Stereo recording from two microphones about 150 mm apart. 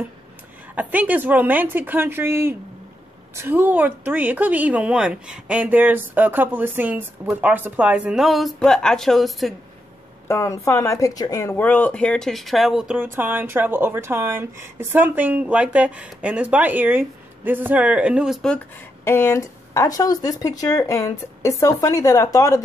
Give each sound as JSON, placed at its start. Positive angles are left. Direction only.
{"t": 0.7, "sound": "speech", "side_deg": -10}
{"t": 10.2, "sound": "speech", "side_deg": 20}
{"t": 19.0, "sound": "speech", "side_deg": 15}